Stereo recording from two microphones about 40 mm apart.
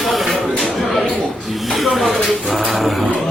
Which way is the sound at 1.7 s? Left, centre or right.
Centre.